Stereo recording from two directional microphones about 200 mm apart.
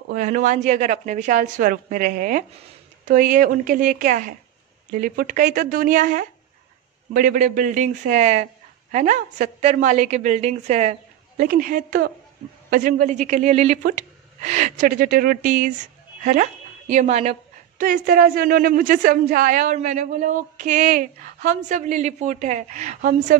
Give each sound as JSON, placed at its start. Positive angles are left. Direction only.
{"t": 0.1, "sound": "a woman's voice", "side_deg": -40}
{"t": 16.9, "sound": "a woman's voice", "side_deg": -35}